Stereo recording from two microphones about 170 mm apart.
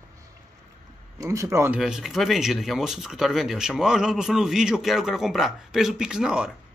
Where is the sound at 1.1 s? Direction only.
20° right (ahead or behind).